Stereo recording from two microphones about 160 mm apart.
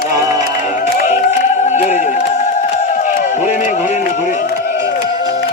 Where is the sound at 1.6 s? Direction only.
50° left (ahead or behind).